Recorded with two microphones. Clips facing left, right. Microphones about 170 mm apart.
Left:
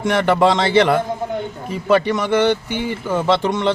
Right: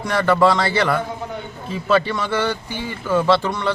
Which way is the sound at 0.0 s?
20° left (ahead or behind).